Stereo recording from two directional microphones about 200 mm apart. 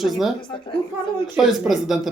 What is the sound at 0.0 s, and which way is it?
Speech, centre (ahead or behind).